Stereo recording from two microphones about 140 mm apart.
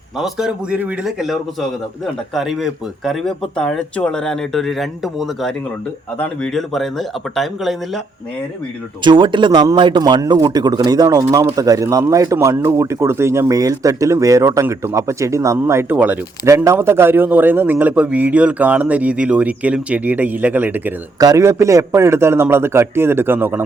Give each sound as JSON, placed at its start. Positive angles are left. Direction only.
{"t": 0.2, "sound": "speech", "side_deg": -5}
{"t": 9.0, "sound": "a man's voice", "side_deg": -35}
{"t": 21.2, "sound": "a man's voice", "side_deg": -25}